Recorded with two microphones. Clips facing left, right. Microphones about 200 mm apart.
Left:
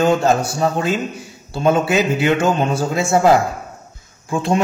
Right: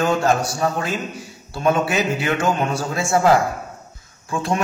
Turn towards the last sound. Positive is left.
turn(degrees=25)  # may be behind; listen again after turning